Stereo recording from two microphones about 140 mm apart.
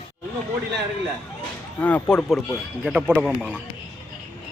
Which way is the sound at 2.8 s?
10° right (ahead or behind).